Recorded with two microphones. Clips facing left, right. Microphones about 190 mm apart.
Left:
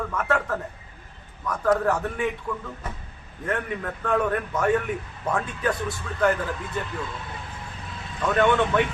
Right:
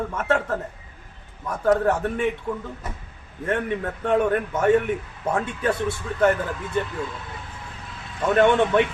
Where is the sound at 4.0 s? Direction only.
25° right (ahead or behind).